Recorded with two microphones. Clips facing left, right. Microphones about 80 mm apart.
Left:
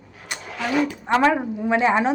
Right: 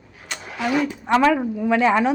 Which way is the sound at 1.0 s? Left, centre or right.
Left.